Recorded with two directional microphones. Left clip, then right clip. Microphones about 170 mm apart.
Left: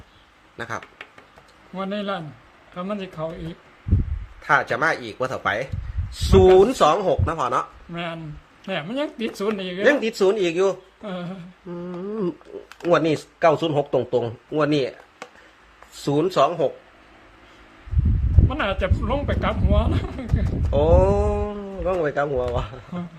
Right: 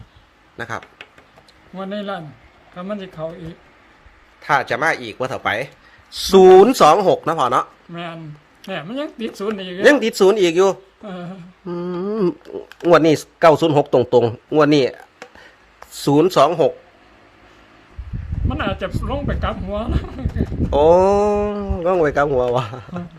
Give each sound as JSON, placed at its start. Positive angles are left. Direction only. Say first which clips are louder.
{"t": 0.5, "sound": "speech", "louder": "right 3 dB", "side_deg": -30}
{"t": 1.7, "sound": "a man's voice", "louder": "right 1 dB", "side_deg": 5}
{"t": 4.4, "sound": "speech", "louder": "right 2 dB", "side_deg": -30}
{"t": 6.3, "sound": "speech", "louder": "right 6 dB", "side_deg": -65}
{"t": 7.9, "sound": "a man's voice", "louder": "even", "side_deg": 10}
{"t": 9.8, "sound": "speech", "louder": "right 6 dB", "side_deg": -65}
{"t": 11.0, "sound": "a man's voice", "louder": "even", "side_deg": 15}
{"t": 11.7, "sound": "speech", "louder": "right 7 dB", "side_deg": -65}
{"t": 16.0, "sound": "speech", "louder": "right 6 dB", "side_deg": -65}
{"t": 18.4, "sound": "a man's voice", "louder": "right 1 dB", "side_deg": 15}
{"t": 20.7, "sound": "speech", "louder": "right 6 dB", "side_deg": -65}